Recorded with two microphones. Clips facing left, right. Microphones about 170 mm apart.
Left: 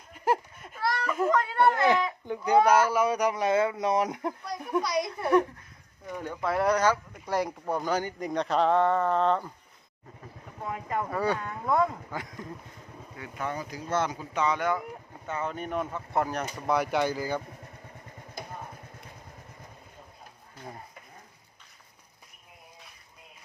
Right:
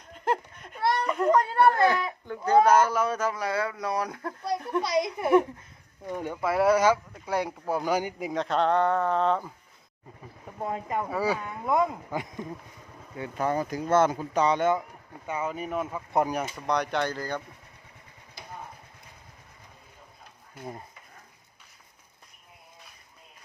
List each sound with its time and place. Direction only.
0.1 s a sound: 5° left (ahead or behind)
0.9 s whimper: 20° right (ahead or behind)
1.7 s speech: 20° left (ahead or behind)
4.8 s speech: 25° right (ahead or behind); by 9.5 s centre (ahead or behind)
10.6 s speech: 35° right (ahead or behind)
10.8 s speech: 10° right (ahead or behind); by 13.5 s 25° right (ahead or behind)
13.5 s speech: 50° right (ahead or behind)
14.4 s speech: 25° right (ahead or behind)
15.3 s speech: 5° right (ahead or behind)
16.6 s speech: 5° left (ahead or behind)